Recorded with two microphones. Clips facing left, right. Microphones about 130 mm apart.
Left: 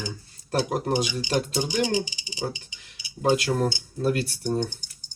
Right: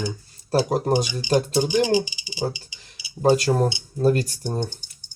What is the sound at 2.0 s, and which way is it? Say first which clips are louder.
Speech: right 3 dB; 10° right (ahead or behind).